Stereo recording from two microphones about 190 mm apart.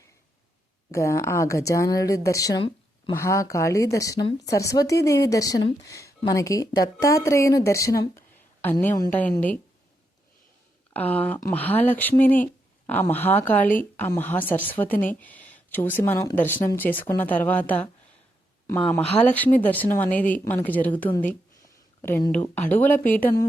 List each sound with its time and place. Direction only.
0.9 s speech: 15° left (ahead or behind)
10.9 s speech: 10° left (ahead or behind)